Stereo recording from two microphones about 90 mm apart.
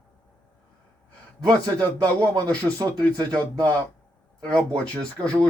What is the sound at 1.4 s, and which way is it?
Speech, 50° right (ahead or behind).